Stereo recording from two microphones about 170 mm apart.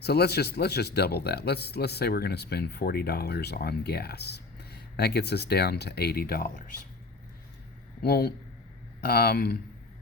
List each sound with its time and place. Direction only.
0.0 s speech: 70° left (ahead or behind)
8.0 s speech: 70° left (ahead or behind)